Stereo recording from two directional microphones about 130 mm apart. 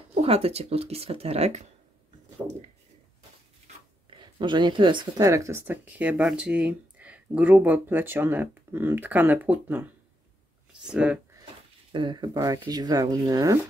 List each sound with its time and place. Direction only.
0.1 s speech: 50° right (ahead or behind)
4.2 s speech: 35° right (ahead or behind)
5.2 s speech: 25° right (ahead or behind)
10.9 s speech: 10° right (ahead or behind)
11.9 s speech: 40° right (ahead or behind)